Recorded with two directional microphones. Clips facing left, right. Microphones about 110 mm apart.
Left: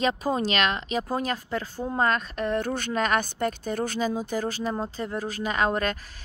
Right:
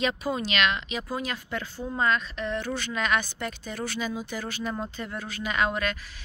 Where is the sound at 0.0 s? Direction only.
40° left (ahead or behind).